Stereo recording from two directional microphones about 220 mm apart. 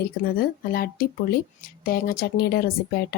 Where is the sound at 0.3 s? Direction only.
45° left (ahead or behind).